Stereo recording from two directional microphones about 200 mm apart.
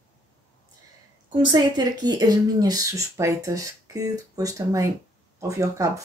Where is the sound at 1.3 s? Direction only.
20° right (ahead or behind).